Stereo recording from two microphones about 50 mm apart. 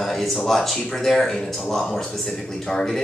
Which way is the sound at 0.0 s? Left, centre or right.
Centre.